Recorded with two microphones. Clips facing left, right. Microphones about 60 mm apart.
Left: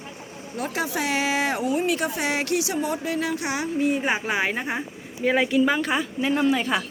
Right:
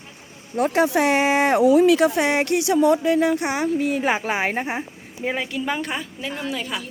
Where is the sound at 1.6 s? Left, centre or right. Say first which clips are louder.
Right 9 dB; right.